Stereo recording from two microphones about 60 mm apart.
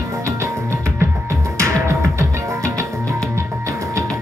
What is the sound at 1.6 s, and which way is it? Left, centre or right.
Music, right.